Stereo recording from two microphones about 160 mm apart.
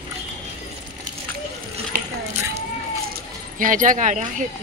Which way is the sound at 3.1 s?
55° right (ahead or behind).